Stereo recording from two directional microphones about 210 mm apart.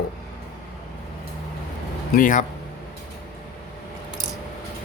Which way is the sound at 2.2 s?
40° left (ahead or behind).